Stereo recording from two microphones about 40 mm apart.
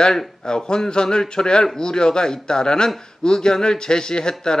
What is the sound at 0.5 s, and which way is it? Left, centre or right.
Speech, centre.